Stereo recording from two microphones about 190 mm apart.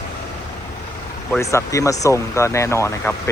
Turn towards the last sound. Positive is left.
turn(degrees=15)  # may be behind; listen again after turning